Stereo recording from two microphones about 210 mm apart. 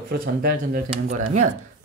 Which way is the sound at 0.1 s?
45° right (ahead or behind).